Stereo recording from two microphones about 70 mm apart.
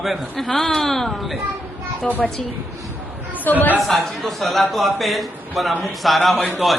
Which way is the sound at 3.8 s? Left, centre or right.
Centre.